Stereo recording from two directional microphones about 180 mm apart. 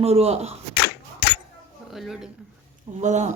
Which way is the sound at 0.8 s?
65° left (ahead or behind).